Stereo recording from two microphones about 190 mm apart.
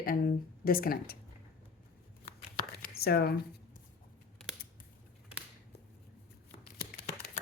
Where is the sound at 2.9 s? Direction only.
55° left (ahead or behind).